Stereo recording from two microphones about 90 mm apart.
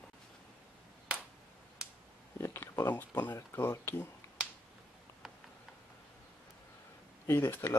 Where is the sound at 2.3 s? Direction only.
30° left (ahead or behind).